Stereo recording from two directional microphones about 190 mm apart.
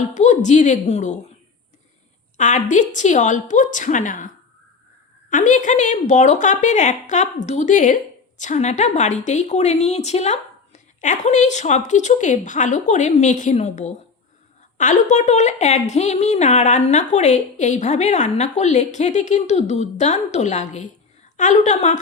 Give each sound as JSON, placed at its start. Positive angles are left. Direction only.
{"t": 0.1, "sound": "a woman's voice", "side_deg": 40}
{"t": 2.4, "sound": "a woman's voice", "side_deg": 40}
{"t": 5.3, "sound": "a woman's voice", "side_deg": 40}